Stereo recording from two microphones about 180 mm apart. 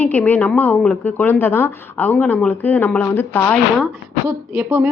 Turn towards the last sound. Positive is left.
turn(degrees=-10)  # may be behind; listen again after turning